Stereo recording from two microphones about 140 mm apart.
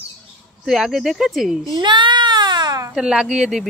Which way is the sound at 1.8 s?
35° right (ahead or behind).